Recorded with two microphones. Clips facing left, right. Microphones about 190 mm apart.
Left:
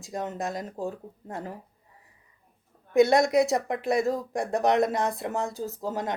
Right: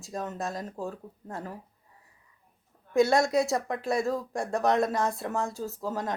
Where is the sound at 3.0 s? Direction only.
20° left (ahead or behind).